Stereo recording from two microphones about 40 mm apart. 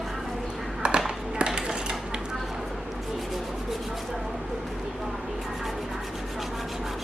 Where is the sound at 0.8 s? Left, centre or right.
Right.